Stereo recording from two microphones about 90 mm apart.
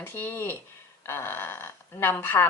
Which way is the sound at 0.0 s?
25° left (ahead or behind).